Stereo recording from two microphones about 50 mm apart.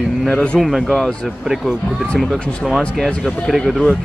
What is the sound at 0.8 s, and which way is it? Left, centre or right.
Speech, centre.